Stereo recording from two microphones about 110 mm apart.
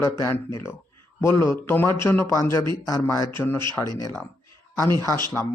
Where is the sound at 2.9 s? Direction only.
30° left (ahead or behind).